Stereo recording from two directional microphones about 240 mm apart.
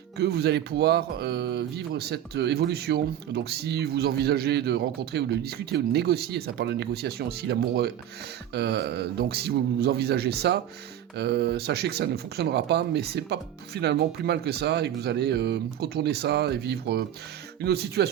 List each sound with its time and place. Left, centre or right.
0.2 s speech: right